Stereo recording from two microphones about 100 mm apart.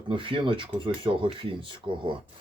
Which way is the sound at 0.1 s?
55° right (ahead or behind).